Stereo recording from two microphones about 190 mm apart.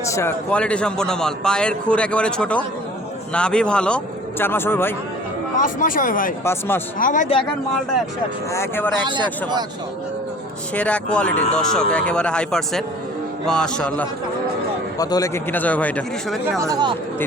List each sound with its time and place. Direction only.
0.1 s a man's voice: 15° left (ahead or behind)
5.5 s speech: 45° left (ahead or behind)
6.4 s a man's voice: 10° left (ahead or behind)
7.0 s speech: 40° left (ahead or behind)
8.5 s a man's voice: 10° left (ahead or behind)
9.0 s speech: 25° right (ahead or behind)
10.8 s a man's voice: 5° left (ahead or behind)
14.9 s a man's voice: 20° left (ahead or behind)
16.6 s speech: 20° right (ahead or behind)